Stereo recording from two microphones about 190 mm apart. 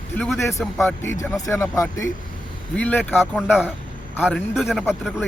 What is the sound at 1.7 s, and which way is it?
Speech, 15° left (ahead or behind).